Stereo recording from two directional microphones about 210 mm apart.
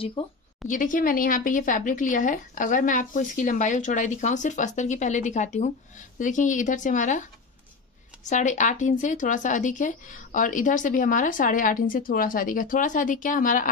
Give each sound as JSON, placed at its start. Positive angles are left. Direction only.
{"t": 0.2, "sound": "a woman's voice", "side_deg": 25}
{"t": 0.7, "sound": "a woman's voice", "side_deg": 40}